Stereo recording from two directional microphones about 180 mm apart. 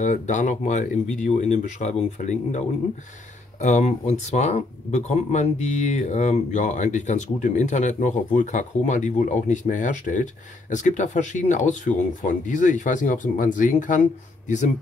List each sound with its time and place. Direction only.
0.0 s speech: 45° left (ahead or behind)